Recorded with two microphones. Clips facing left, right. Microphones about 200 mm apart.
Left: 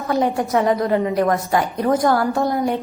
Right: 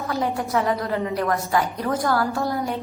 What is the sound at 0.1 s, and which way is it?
A woman's voice, 20° left (ahead or behind).